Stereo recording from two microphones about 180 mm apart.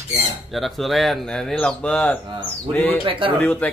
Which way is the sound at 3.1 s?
30° right (ahead or behind).